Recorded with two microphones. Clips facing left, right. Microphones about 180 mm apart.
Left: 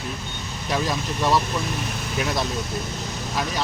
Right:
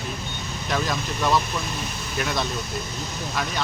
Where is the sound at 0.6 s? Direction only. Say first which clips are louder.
Left 1 dB; 10° left (ahead or behind).